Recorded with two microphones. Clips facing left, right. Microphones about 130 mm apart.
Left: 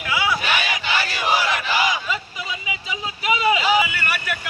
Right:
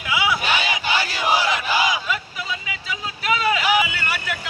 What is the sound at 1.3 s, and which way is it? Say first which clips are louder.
Battle cry: right 1 dB; 15° right (ahead or behind).